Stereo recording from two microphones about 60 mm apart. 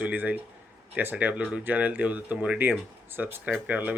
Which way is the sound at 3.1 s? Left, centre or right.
Right.